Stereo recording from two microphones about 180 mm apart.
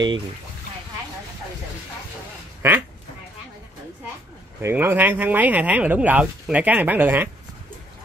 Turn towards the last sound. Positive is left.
turn(degrees=-10)  # may be behind; listen again after turning